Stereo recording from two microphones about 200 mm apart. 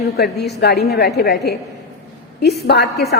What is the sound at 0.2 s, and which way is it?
A woman's voice, 50° left (ahead or behind).